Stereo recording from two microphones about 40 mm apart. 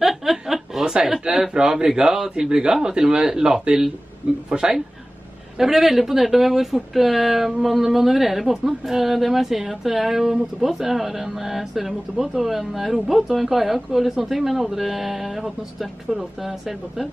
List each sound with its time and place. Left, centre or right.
0.0 s chuckle: centre
0.8 s a man's voice: centre
5.6 s a man's voice: centre